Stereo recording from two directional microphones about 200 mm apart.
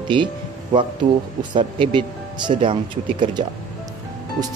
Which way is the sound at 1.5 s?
25° right (ahead or behind).